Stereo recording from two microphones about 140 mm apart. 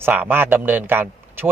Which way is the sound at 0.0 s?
15° right (ahead or behind).